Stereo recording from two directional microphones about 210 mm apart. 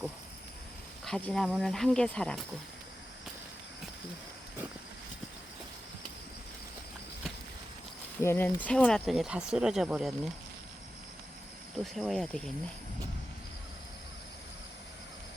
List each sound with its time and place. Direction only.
1.0 s speech: 5° left (ahead or behind)
8.2 s speech: 10° left (ahead or behind)
11.8 s speech: centre (ahead or behind)